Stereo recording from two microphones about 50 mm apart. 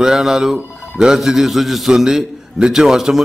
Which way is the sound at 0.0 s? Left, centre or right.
Centre.